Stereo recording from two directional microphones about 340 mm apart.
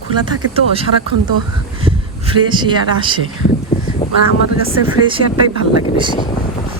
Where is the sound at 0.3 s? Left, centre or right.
Centre.